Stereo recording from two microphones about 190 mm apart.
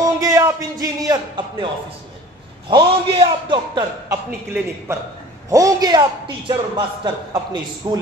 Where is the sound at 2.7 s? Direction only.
25° right (ahead or behind).